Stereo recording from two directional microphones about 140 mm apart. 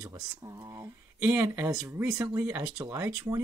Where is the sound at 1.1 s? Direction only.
10° right (ahead or behind).